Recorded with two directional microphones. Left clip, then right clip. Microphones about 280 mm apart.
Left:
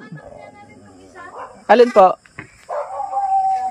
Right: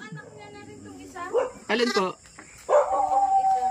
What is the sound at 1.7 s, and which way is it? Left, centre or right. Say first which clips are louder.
Speech: left 17 dB; centre.